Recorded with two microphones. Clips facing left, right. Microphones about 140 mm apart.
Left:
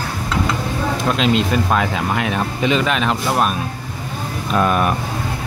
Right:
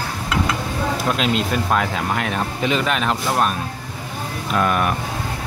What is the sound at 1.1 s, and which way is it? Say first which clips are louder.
Speech: left 4 dB; centre (ahead or behind).